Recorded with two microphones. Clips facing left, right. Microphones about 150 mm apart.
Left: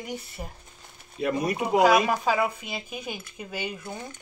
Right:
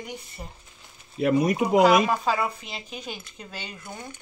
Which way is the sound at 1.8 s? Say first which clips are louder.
Right 1 dB; 10° left (ahead or behind).